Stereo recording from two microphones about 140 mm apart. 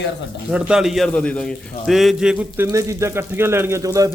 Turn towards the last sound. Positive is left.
turn(degrees=-25)  # may be behind; listen again after turning